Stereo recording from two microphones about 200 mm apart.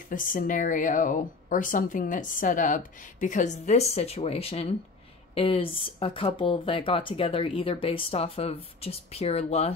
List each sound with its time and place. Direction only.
0.1 s speech: 40° left (ahead or behind)